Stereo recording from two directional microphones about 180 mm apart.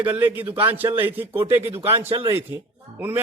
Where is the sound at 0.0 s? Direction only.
10° right (ahead or behind).